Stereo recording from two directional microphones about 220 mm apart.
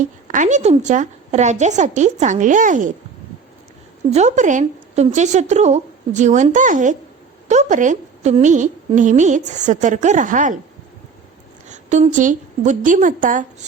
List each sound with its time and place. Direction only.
0.0 s a woman's voice: 35° right (ahead or behind)
4.1 s a woman's voice: 30° right (ahead or behind)
11.7 s a woman's voice: 30° right (ahead or behind)